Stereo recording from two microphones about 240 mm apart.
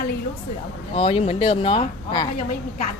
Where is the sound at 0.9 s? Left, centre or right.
Left.